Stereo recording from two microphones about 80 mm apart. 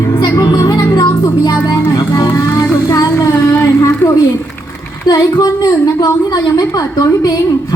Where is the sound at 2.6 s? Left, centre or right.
Left.